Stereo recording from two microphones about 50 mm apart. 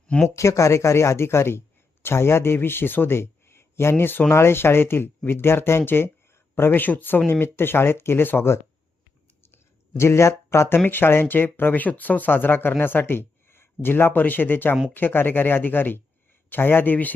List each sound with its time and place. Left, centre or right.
0.3 s speech: left
3.2 s a sound: left
4.3 s speech: left
10.0 s speech: left
10.8 s speech: left